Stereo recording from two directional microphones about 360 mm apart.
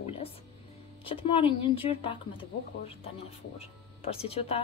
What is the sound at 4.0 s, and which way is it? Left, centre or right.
Speech, centre.